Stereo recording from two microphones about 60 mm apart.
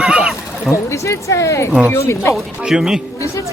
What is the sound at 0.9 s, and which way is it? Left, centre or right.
Speech, left.